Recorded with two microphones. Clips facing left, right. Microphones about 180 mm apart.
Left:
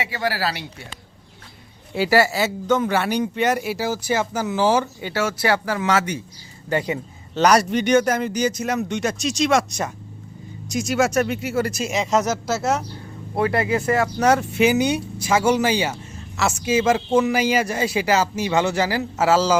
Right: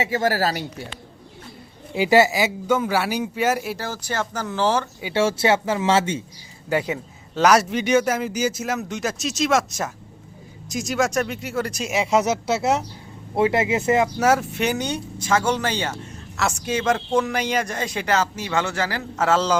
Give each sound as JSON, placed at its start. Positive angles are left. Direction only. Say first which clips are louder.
{"t": 0.0, "sound": "speech", "louder": "right 3 dB", "side_deg": -45}
{"t": 2.0, "sound": "a man's voice", "louder": "right 1 dB", "side_deg": -20}
{"t": 5.1, "sound": "speech", "louder": "right 2 dB", "side_deg": -25}
{"t": 6.7, "sound": "a man's voice", "louder": "even", "side_deg": -5}
{"t": 11.9, "sound": "speech", "louder": "right 2 dB", "side_deg": -10}
{"t": 13.3, "sound": "speech", "louder": "right 1 dB", "side_deg": -20}
{"t": 14.2, "sound": "speech", "louder": "left 2 dB", "side_deg": -5}